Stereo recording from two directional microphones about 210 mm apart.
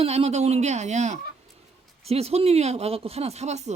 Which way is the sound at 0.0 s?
30° right (ahead or behind).